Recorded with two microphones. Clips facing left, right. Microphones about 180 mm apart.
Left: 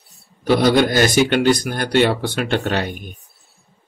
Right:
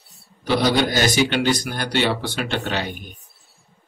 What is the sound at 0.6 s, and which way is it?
A man's voice, 50° left (ahead or behind).